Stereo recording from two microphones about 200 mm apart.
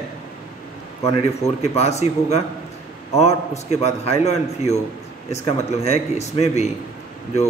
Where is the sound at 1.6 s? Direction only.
30° left (ahead or behind).